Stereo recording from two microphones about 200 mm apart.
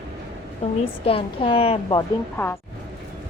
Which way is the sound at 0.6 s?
30° left (ahead or behind).